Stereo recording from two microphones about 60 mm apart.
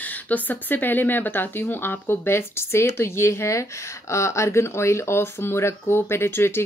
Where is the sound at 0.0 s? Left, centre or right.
Left.